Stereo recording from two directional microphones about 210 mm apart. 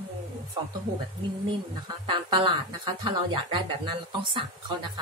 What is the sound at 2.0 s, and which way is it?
Speech, 20° right (ahead or behind).